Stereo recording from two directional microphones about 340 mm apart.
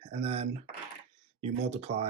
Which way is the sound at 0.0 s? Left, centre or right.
Centre.